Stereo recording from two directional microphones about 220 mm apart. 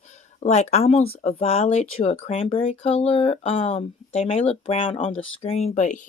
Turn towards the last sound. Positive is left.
turn(degrees=35)  # may be behind; listen again after turning